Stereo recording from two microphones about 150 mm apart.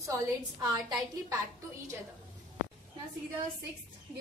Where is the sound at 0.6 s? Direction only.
25° right (ahead or behind).